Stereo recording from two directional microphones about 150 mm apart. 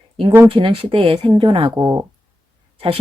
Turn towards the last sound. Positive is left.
turn(degrees=-35)  # may be behind; listen again after turning